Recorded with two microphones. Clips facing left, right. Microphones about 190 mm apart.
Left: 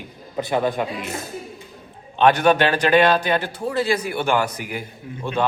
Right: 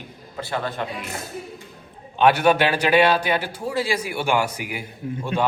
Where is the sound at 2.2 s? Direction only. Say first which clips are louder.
Left 1 dB; 5° right (ahead or behind).